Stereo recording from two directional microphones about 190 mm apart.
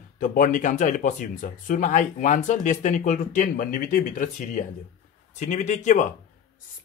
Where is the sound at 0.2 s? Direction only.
45° left (ahead or behind).